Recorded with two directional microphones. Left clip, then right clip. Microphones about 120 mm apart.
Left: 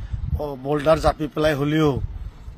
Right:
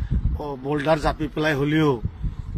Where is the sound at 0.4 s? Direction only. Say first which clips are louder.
Left 2 dB; 50° left (ahead or behind).